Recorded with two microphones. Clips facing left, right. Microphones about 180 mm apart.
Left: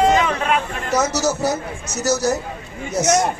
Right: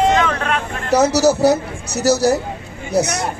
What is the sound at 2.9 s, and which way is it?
Speech, 60° right (ahead or behind).